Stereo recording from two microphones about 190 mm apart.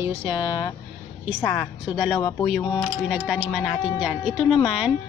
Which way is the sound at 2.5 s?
Centre (ahead or behind).